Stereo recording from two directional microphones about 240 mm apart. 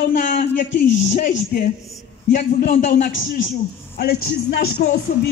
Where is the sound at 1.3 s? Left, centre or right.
Left.